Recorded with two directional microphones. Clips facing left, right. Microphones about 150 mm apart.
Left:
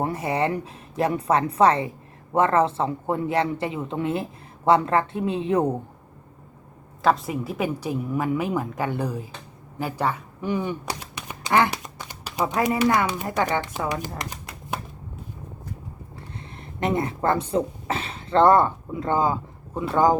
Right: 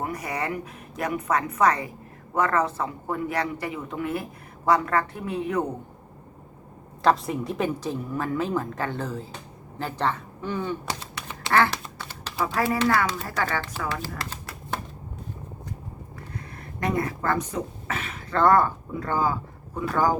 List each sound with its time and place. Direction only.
0.0 s a man's voice: 25° left (ahead or behind)
7.0 s a woman's voice: centre (ahead or behind)
14.1 s shuffling cards: 20° left (ahead or behind)
16.8 s speech: 25° left (ahead or behind)